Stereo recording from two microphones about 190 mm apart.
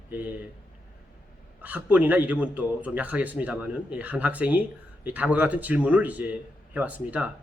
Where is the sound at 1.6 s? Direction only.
10° right (ahead or behind).